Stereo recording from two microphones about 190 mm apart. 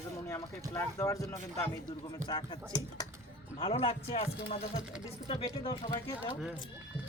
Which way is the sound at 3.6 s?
30° left (ahead or behind).